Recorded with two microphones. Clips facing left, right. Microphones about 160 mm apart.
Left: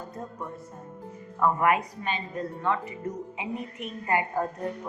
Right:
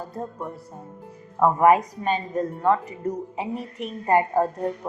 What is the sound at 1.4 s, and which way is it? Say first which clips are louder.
A woman's voice: right 6 dB; 40° right (ahead or behind).